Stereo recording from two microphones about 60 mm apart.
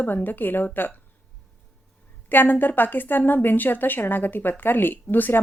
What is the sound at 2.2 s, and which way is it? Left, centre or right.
Speech, left.